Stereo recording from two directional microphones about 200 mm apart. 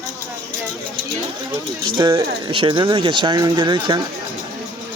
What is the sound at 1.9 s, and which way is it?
Speech, 20° right (ahead or behind).